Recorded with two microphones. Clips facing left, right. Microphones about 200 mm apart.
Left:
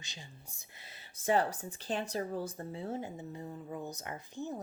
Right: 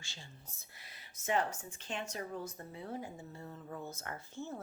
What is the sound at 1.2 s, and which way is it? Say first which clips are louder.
Speech: left 4 dB; 35° left (ahead or behind).